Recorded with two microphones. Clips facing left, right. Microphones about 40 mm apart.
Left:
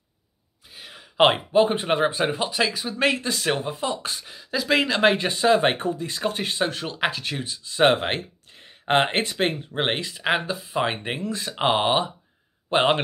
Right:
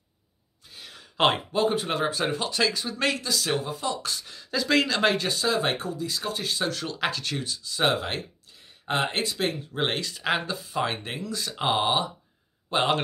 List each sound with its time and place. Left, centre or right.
0.7 s speech: centre
3.2 s speech: left
4.4 s speech: centre
7.6 s a man's voice: left